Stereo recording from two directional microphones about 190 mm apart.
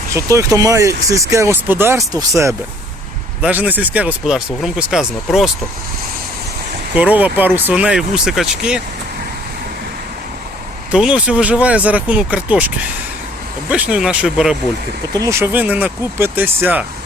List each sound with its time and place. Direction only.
0.1 s speech: 15° right (ahead or behind)
6.9 s speech: 10° right (ahead or behind)
10.9 s speech: 5° right (ahead or behind)
15.1 s speech: 15° right (ahead or behind)